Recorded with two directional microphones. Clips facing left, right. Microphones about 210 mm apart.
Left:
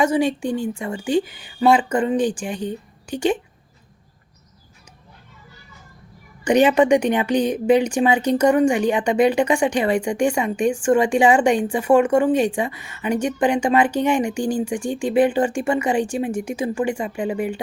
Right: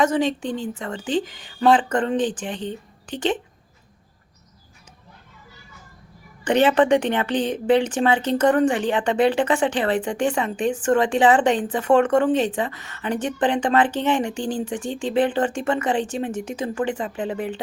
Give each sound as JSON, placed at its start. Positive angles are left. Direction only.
{"t": 0.0, "sound": "speech", "side_deg": 10}
{"t": 6.4, "sound": "speech", "side_deg": 15}